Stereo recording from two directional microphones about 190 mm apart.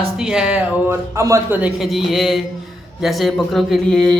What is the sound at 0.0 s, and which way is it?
Speech, 5° right (ahead or behind).